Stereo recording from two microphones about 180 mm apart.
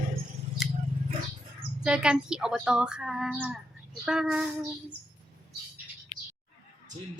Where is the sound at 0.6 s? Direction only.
Centre (ahead or behind).